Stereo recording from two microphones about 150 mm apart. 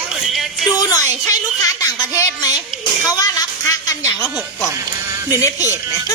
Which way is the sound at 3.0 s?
25° left (ahead or behind).